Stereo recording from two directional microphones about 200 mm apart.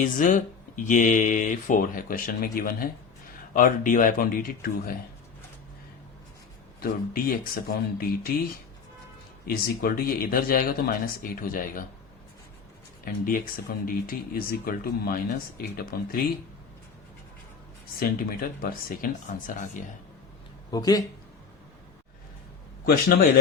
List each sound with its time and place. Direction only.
0.0 s speech: 40° left (ahead or behind)
6.8 s speech: 45° left (ahead or behind)
9.5 s speech: 45° left (ahead or behind)
13.1 s speech: 45° left (ahead or behind)
18.0 s speech: 50° left (ahead or behind)
20.7 s speech: 20° left (ahead or behind)